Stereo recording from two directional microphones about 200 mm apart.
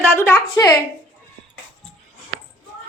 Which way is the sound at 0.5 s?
15° left (ahead or behind).